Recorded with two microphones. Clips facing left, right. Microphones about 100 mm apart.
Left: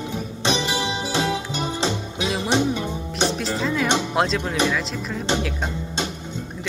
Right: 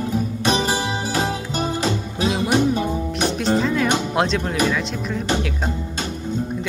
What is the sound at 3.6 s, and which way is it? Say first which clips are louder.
Music: right 3 dB; centre (ahead or behind).